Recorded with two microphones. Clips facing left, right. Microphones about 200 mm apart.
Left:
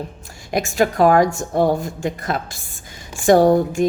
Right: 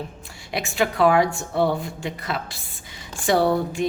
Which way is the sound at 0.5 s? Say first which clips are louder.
Left 5 dB; 45° left (ahead or behind).